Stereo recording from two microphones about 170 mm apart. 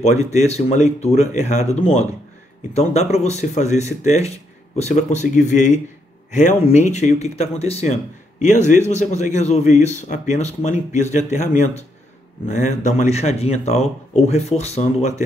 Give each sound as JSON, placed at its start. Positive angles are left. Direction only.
{"t": 0.5, "sound": "a man's voice", "side_deg": 40}